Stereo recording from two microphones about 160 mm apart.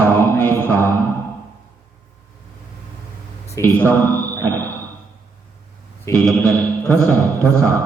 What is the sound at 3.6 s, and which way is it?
Speech, 20° left (ahead or behind).